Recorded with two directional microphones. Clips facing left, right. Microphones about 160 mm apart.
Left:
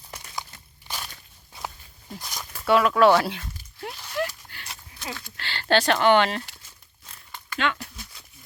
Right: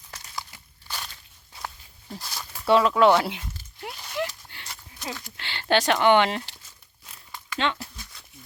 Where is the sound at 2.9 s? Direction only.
15° right (ahead or behind).